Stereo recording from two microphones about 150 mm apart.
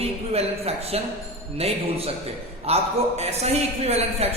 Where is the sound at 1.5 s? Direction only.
40° right (ahead or behind).